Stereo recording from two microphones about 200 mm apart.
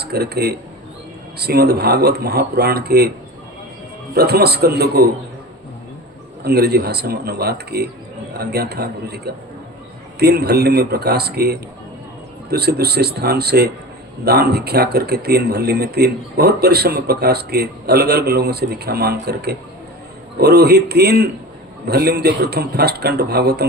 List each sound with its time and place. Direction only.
0.0 s speech: 55° right (ahead or behind)
4.1 s speech: 50° right (ahead or behind)
6.4 s speech: 55° right (ahead or behind)